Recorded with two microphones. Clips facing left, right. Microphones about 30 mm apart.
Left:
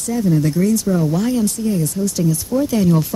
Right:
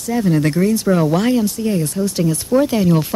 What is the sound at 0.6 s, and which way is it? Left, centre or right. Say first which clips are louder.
Speech: right 1 dB; right.